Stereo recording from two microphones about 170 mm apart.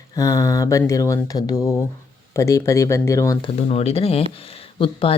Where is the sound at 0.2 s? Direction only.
20° left (ahead or behind).